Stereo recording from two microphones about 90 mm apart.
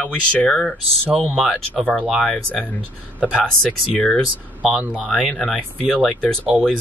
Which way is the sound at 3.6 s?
10° left (ahead or behind).